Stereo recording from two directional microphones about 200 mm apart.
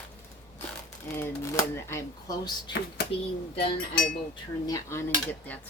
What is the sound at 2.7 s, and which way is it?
Speech, 60° left (ahead or behind).